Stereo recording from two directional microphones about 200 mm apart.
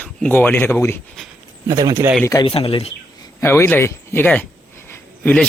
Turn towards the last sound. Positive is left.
turn(degrees=10)  # may be behind; listen again after turning